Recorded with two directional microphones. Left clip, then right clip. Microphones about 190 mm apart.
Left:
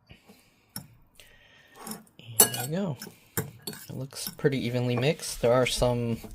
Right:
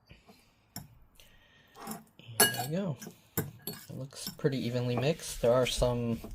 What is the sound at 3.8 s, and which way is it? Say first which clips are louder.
Speech: left 5 dB; 30° left (ahead or behind).